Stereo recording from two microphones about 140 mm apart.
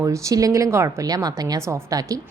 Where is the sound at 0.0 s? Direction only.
25° right (ahead or behind).